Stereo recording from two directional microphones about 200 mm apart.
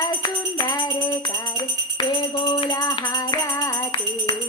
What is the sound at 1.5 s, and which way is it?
Music, 25° left (ahead or behind).